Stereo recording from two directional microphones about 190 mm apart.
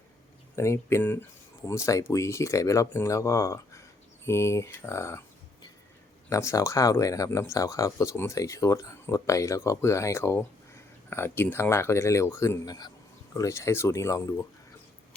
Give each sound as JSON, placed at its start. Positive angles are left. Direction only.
{"t": 0.5, "sound": "speech", "side_deg": 15}
{"t": 6.3, "sound": "speech", "side_deg": 15}